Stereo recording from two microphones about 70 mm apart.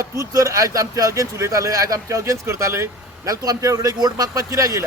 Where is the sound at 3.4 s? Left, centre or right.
Right.